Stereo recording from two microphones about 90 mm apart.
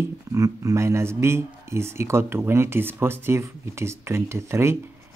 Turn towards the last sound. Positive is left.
turn(degrees=-30)  # may be behind; listen again after turning